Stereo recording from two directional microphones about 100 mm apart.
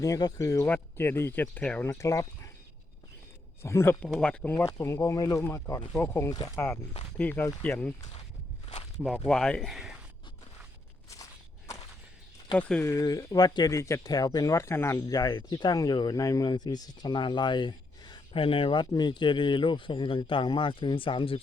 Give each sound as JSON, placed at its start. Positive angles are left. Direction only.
{"t": 0.0, "sound": "speech", "side_deg": 40}
{"t": 1.9, "sound": "speech", "side_deg": 35}
{"t": 3.6, "sound": "speech", "side_deg": 25}
{"t": 4.2, "sound": "speech", "side_deg": 10}
{"t": 4.5, "sound": "speech", "side_deg": 25}
{"t": 9.1, "sound": "speech", "side_deg": 10}
{"t": 12.5, "sound": "speech", "side_deg": 10}
{"t": 12.8, "sound": "speech", "side_deg": 35}
{"t": 15.0, "sound": "speech", "side_deg": 40}
{"t": 18.3, "sound": "speech", "side_deg": 65}